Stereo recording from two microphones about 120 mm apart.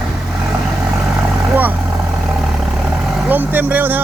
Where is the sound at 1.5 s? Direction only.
15° right (ahead or behind).